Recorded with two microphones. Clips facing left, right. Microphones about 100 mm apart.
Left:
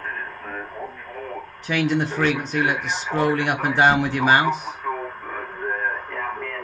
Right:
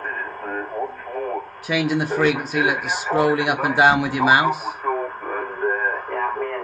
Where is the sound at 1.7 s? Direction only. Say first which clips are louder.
Right 1 dB; 5° right (ahead or behind).